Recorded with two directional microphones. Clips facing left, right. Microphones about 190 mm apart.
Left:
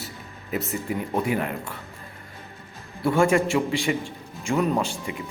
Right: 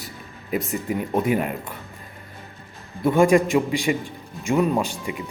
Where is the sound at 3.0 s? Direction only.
20° right (ahead or behind).